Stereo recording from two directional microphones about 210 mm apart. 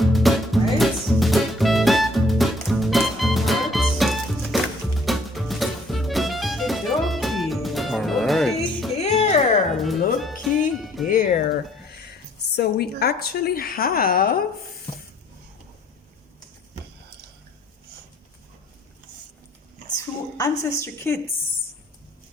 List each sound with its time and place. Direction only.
0.0 s music: centre (ahead or behind)
9.0 s music: 30° left (ahead or behind)
9.7 s music: centre (ahead or behind)
11.1 s a sound: 40° left (ahead or behind)
20.3 s a woman's voice: 15° left (ahead or behind)